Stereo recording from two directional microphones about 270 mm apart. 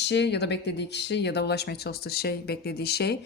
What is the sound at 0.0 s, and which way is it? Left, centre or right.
Speech, left.